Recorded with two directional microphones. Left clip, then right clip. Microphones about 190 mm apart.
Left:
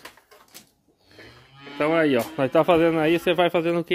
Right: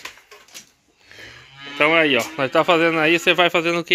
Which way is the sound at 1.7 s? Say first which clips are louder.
Right 6 dB; 10° left (ahead or behind).